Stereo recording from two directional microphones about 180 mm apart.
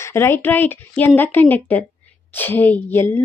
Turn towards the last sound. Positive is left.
turn(degrees=15)  # may be behind; listen again after turning